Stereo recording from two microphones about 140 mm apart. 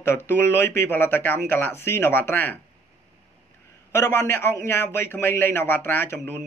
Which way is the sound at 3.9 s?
20° left (ahead or behind).